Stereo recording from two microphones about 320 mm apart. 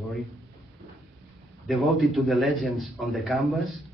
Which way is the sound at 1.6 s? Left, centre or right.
Centre.